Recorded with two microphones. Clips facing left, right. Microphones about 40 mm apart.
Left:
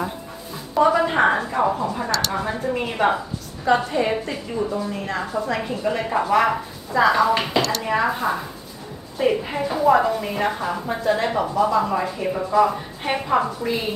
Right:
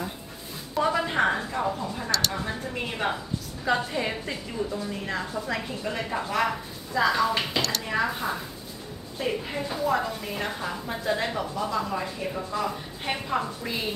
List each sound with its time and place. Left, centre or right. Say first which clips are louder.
0.7 s a sound: left 7 dB; centre
1.5 s a woman's voice: left 7 dB; left
2.0 s speech: left 4 dB; centre
2.3 s a woman's voice: left 7 dB; left
5.2 s a woman's voice: left 7 dB; left
5.8 s a woman's voice: left 8 dB; centre
13.6 s speech: left 7 dB; centre